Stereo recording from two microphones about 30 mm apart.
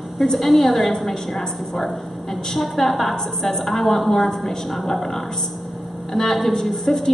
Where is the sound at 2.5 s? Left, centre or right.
Centre.